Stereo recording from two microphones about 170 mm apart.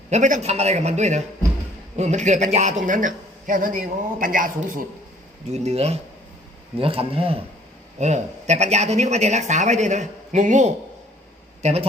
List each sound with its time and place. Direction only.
0.1 s a man's voice: 45° right (ahead or behind)
5.5 s a man's voice: 40° right (ahead or behind)